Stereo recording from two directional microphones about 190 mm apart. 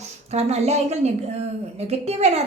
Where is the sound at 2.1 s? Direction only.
35° right (ahead or behind).